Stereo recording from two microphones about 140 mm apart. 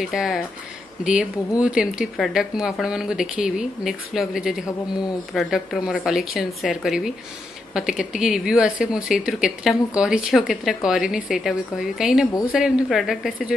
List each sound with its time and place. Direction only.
0.0 s speech: centre (ahead or behind)
1.6 s speech: 5° right (ahead or behind)